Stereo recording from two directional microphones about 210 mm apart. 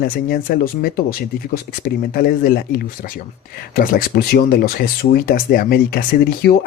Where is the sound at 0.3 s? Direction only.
45° left (ahead or behind).